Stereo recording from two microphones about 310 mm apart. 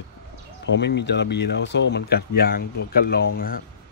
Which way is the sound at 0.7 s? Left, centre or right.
Left.